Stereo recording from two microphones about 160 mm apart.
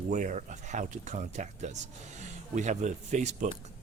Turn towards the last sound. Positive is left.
turn(degrees=-45)  # may be behind; listen again after turning